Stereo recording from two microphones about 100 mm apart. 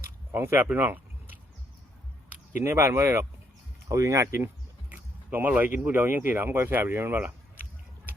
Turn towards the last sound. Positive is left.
turn(degrees=-20)  # may be behind; listen again after turning